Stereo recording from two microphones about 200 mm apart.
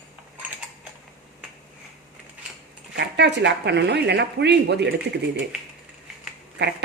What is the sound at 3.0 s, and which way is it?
Speech, 60° right (ahead or behind).